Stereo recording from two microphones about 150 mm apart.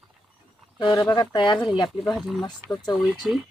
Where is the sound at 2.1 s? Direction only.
Centre (ahead or behind).